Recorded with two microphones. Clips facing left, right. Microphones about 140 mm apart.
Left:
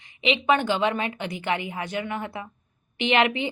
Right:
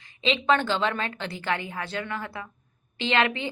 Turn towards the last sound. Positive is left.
turn(degrees=20)  # may be behind; listen again after turning